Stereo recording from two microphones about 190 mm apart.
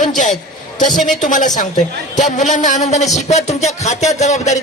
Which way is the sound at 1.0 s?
40° left (ahead or behind).